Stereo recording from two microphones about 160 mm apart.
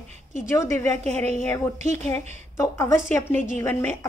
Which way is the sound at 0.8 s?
45° right (ahead or behind).